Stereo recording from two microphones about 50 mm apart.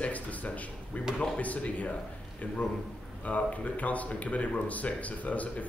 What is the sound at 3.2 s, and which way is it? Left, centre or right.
Speech, left.